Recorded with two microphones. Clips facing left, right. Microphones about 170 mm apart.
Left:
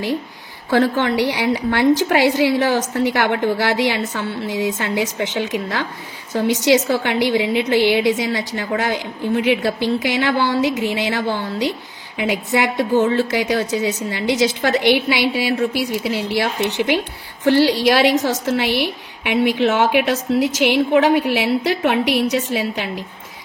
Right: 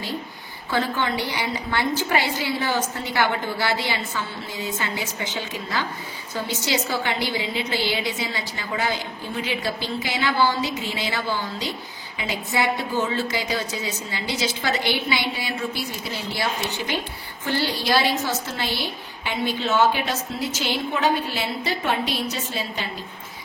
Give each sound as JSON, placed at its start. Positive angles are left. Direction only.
{"t": 0.7, "sound": "a woman's voice", "side_deg": 70}
{"t": 17.5, "sound": "a woman's voice", "side_deg": 85}